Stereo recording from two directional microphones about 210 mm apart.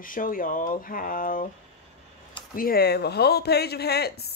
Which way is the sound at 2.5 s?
45° left (ahead or behind).